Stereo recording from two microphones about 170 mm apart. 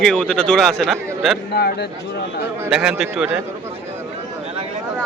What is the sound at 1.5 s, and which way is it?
Speech, 70° left (ahead or behind).